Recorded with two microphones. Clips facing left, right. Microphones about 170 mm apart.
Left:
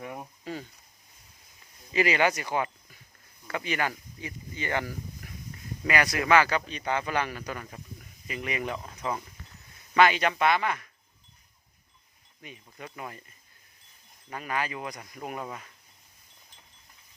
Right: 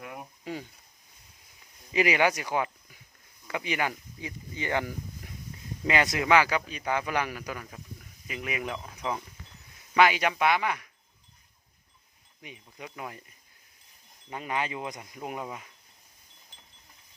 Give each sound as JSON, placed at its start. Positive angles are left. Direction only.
{"t": 0.0, "sound": "cricket", "side_deg": 0}
{"t": 0.4, "sound": "cricket", "side_deg": -15}
{"t": 1.9, "sound": "speech", "side_deg": -15}
{"t": 9.9, "sound": "speech", "side_deg": -10}
{"t": 12.4, "sound": "speech", "side_deg": -15}
{"t": 14.3, "sound": "speech", "side_deg": -20}